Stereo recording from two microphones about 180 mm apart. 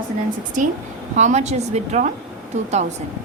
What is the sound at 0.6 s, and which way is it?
A woman's voice, 45° right (ahead or behind).